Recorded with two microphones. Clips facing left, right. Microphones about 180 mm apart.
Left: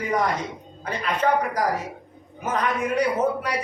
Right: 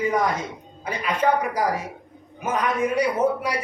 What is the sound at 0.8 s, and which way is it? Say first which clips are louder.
A man's voice: right 1 dB; 10° right (ahead or behind).